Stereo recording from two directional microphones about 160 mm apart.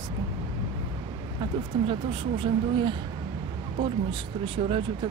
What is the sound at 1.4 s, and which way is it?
Speech, 35° right (ahead or behind).